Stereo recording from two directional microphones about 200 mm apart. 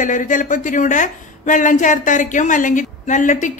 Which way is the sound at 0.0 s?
40° left (ahead or behind).